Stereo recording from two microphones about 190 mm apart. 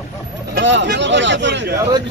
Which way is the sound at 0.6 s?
70° right (ahead or behind).